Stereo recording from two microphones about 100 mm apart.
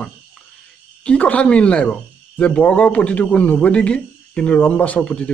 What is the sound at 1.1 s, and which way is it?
Speech, 15° left (ahead or behind).